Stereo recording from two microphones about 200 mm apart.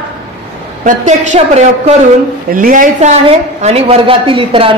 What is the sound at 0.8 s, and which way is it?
A woman's voice, 40° right (ahead or behind).